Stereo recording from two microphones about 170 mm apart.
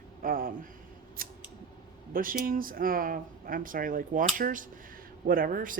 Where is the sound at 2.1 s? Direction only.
55° right (ahead or behind).